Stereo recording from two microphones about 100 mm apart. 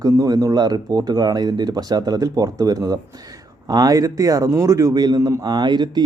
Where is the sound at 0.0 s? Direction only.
35° right (ahead or behind).